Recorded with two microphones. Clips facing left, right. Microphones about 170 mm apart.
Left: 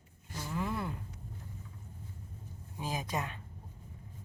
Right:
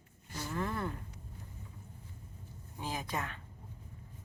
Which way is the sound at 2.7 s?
15° left (ahead or behind).